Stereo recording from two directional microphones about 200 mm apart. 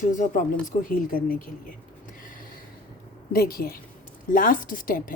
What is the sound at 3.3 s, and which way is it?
Speech, 45° left (ahead or behind).